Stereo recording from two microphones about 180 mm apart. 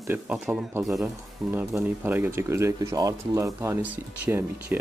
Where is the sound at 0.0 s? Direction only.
10° right (ahead or behind).